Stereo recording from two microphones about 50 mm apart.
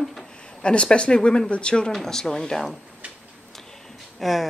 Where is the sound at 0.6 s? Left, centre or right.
Centre.